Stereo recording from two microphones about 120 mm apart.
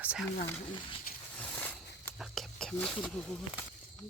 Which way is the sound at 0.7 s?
45° left (ahead or behind).